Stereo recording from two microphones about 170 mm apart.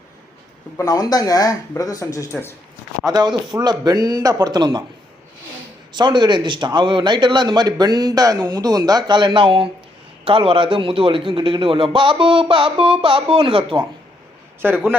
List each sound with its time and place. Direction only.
0.8 s speech: 20° left (ahead or behind)
3.1 s speech: 25° right (ahead or behind)
5.9 s a man's voice: 25° right (ahead or behind)
14.6 s a man's voice: 10° right (ahead or behind)